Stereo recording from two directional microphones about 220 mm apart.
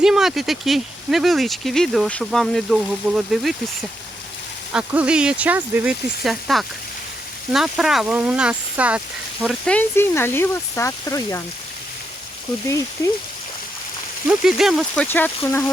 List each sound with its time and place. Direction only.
0.0 s speech: centre (ahead or behind)
4.7 s speech: 5° right (ahead or behind); by 11.4 s 15° left (ahead or behind)
14.3 s speech: centre (ahead or behind)